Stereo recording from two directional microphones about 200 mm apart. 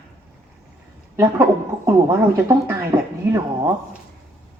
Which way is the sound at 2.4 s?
15° right (ahead or behind).